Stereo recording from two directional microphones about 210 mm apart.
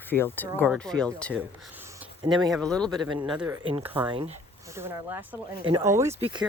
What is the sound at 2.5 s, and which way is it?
Speech, 5° left (ahead or behind).